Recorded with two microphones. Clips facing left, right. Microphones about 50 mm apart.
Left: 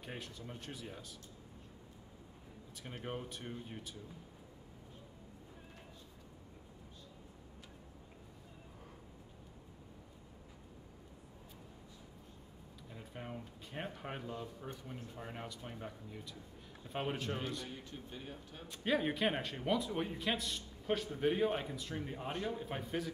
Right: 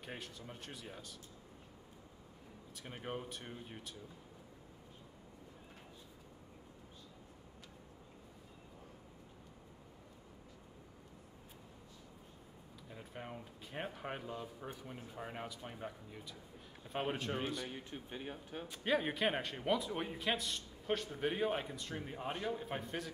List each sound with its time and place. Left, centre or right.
0.0 s speech: centre
2.7 s speech: centre
12.9 s speech: centre
17.6 s speech: right
18.7 s speech: centre